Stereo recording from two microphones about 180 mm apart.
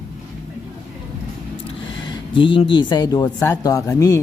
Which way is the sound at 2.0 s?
25° left (ahead or behind).